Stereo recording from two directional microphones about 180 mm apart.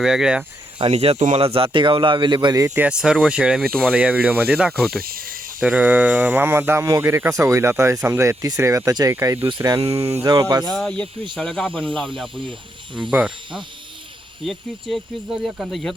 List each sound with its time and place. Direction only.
0.0 s speech: 5° right (ahead or behind)
0.8 s speech: 35° right (ahead or behind)
2.8 s speech: 5° right (ahead or behind)
3.9 s speech: 10° right (ahead or behind)
4.9 s speech: 55° right (ahead or behind)
5.6 s speech: 10° right (ahead or behind)
10.0 s speech: 35° right (ahead or behind)
10.2 s speech: 20° right (ahead or behind)
10.7 s speech: 5° left (ahead or behind)